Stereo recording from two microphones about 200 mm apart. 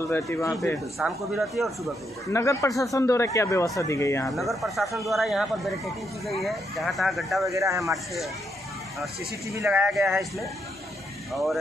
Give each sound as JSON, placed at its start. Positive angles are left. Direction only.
{"t": 0.1, "sound": "speech", "side_deg": 15}
{"t": 0.6, "sound": "speech", "side_deg": 0}
{"t": 2.3, "sound": "speech", "side_deg": 15}
{"t": 4.3, "sound": "speech", "side_deg": 0}
{"t": 7.4, "sound": "speech", "side_deg": -15}
{"t": 9.7, "sound": "speech", "side_deg": 0}